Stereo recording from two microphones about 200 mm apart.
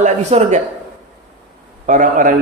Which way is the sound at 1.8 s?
40° right (ahead or behind).